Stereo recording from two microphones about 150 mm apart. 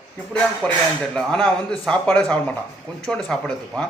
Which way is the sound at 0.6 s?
5° left (ahead or behind).